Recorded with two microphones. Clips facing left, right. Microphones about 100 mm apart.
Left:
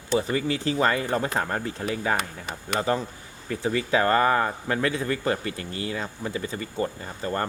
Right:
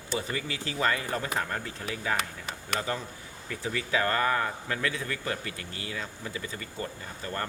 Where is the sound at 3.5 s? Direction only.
35° left (ahead or behind).